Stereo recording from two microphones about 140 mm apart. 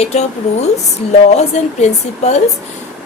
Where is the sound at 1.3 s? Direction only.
50° left (ahead or behind).